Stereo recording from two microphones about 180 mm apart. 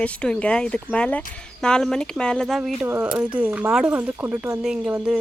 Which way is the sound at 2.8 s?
10° right (ahead or behind).